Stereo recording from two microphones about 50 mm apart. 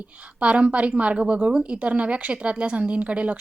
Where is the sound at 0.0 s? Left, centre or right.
Right.